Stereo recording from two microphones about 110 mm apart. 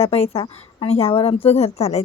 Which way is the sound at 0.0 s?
65° left (ahead or behind).